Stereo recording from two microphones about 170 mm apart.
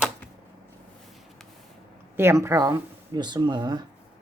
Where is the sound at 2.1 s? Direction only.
15° right (ahead or behind).